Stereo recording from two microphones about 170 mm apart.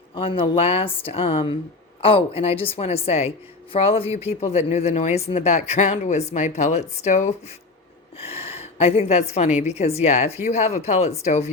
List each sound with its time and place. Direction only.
0.1 s a woman's voice: 30° left (ahead or behind)